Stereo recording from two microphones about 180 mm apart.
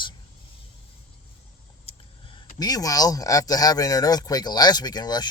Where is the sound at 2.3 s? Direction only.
20° left (ahead or behind).